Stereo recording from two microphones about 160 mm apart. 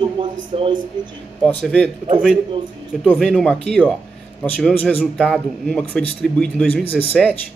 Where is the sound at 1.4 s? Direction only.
10° left (ahead or behind).